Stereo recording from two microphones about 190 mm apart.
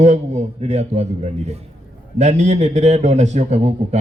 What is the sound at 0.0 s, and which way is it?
A man's voice, 35° right (ahead or behind).